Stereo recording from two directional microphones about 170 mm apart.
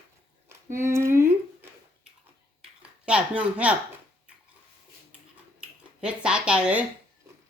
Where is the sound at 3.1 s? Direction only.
5° right (ahead or behind).